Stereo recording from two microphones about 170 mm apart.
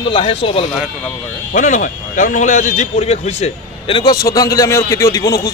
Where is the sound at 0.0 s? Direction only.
30° left (ahead or behind).